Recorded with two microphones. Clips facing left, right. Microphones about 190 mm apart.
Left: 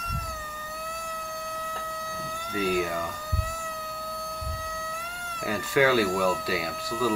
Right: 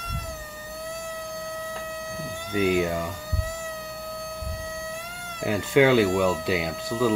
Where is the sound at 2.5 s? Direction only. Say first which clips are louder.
Right 4 dB; 20° right (ahead or behind).